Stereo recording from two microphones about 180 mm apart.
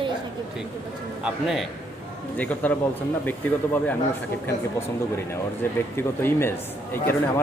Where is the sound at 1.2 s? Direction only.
5° right (ahead or behind).